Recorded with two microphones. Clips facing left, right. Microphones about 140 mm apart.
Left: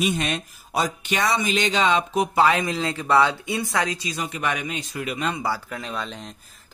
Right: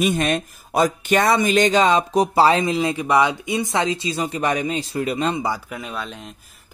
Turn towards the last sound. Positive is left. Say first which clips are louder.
# right 1 dB
turn(degrees=-5)  # may be behind; listen again after turning